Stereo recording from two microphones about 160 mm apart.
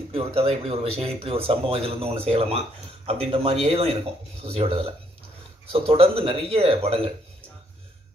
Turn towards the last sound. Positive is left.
turn(degrees=-35)  # may be behind; listen again after turning